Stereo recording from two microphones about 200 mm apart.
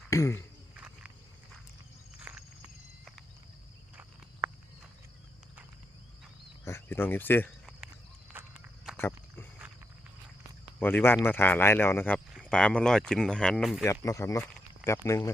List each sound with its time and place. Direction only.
0.1 s speech: 15° left (ahead or behind)
2.1 s a sound: 5° right (ahead or behind)
3.9 s walk: 5° right (ahead or behind)
6.7 s speech: 10° left (ahead or behind)
8.3 s walk: 5° right (ahead or behind)
9.0 s a sound: 10° left (ahead or behind)
10.8 s speech: 10° left (ahead or behind)
13.8 s speech: 15° left (ahead or behind)